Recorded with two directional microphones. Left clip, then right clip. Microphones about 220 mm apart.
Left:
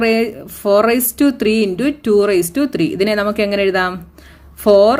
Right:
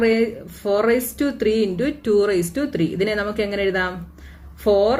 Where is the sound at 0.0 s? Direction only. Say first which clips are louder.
Left 3 dB; 45° left (ahead or behind).